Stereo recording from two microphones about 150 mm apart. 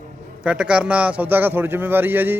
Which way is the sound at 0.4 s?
5° right (ahead or behind).